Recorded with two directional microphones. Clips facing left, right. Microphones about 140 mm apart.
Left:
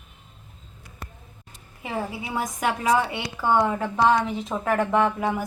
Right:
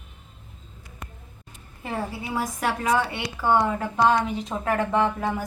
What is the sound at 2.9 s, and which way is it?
Speech, 15° left (ahead or behind).